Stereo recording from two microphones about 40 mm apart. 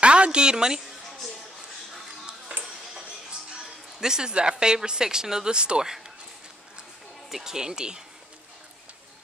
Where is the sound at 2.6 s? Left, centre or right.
Centre.